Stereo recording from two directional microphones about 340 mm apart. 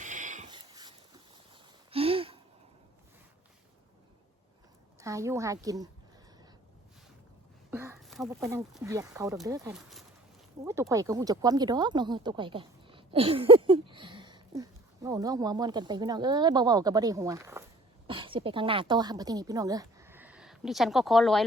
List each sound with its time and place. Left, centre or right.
0.0 s a sound: right
4.9 s speech: centre
7.7 s a woman's voice: centre